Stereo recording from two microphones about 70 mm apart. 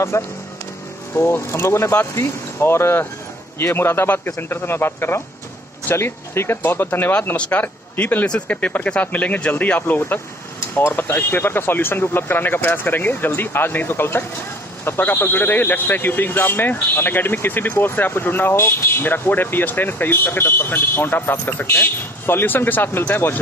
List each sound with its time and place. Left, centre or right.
0.1 s speech: left
7.3 s speech: centre